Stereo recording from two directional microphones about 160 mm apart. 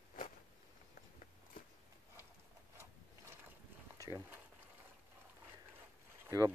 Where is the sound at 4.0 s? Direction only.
20° right (ahead or behind).